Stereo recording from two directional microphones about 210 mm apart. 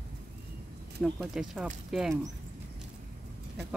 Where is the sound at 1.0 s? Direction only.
Centre (ahead or behind).